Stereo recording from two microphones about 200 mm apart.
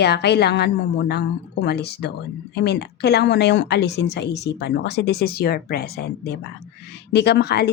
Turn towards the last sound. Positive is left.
turn(degrees=55)  # may be behind; listen again after turning